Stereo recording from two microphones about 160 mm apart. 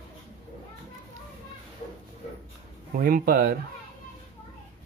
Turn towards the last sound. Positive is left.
turn(degrees=-60)  # may be behind; listen again after turning